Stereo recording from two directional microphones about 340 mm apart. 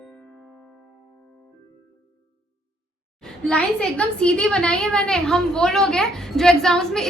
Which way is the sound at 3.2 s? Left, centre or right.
Centre.